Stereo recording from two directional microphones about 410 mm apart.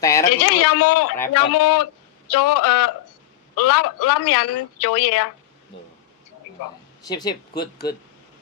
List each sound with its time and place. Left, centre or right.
0.0 s a sound: centre
0.4 s a man's voice: left
5.7 s speech: centre
7.0 s speech: centre